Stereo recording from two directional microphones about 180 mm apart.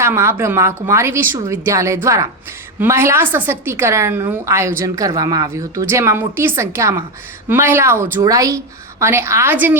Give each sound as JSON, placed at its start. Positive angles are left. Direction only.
{"t": 0.0, "sound": "a woman's voice", "side_deg": -15}